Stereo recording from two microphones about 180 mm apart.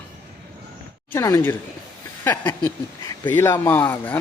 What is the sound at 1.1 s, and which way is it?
Speech, 15° left (ahead or behind).